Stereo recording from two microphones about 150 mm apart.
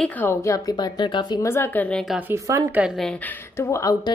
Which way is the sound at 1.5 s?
15° left (ahead or behind).